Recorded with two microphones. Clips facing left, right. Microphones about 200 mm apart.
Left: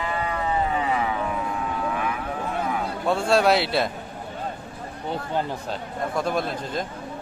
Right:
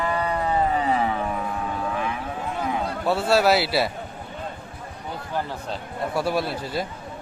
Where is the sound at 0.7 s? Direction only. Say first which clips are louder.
Right 2 dB; 35° right (ahead or behind).